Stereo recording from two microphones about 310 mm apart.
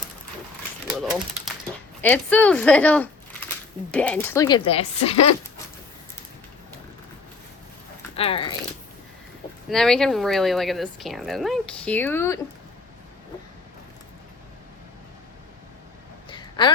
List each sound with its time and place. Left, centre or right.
2.0 s speech: centre
8.1 s speech: centre
9.6 s speech: centre
16.3 s a sound: centre